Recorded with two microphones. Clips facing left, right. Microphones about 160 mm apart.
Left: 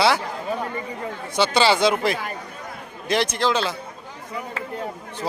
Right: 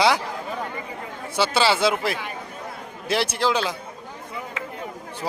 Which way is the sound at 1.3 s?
5° right (ahead or behind).